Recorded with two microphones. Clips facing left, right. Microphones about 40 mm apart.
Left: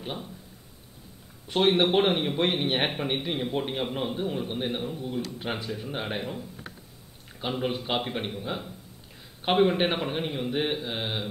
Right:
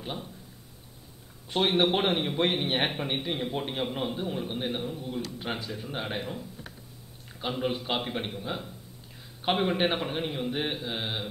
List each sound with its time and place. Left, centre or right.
0.0 s a man's voice: centre
1.5 s a man's voice: centre